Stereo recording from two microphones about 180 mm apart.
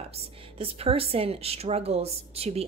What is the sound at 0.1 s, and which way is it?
A woman's voice, 35° right (ahead or behind).